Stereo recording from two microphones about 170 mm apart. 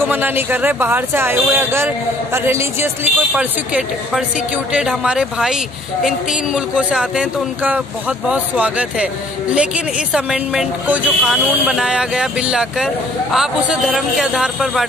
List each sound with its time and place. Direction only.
0.0 s speech: 10° right (ahead or behind)